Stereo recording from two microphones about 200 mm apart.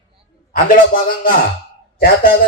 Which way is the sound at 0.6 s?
45° left (ahead or behind).